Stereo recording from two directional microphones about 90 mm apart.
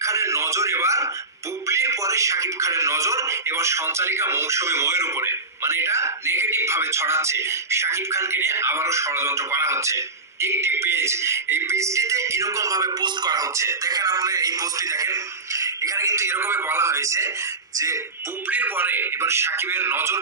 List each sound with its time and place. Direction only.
0.0 s speech: 35° right (ahead or behind)
13.0 s speech: 50° right (ahead or behind)
13.6 s speech: 30° right (ahead or behind)
13.9 s speech: 45° right (ahead or behind)
18.5 s speech: 20° right (ahead or behind)